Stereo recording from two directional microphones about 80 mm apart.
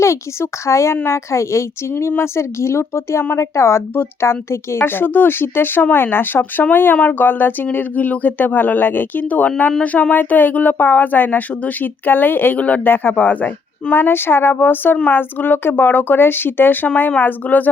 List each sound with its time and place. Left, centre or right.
0.7 s a woman's voice: left